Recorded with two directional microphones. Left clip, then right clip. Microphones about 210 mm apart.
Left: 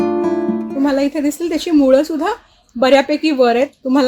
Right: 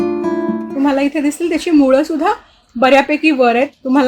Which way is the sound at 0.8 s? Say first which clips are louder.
Right 2 dB; 25° left (ahead or behind).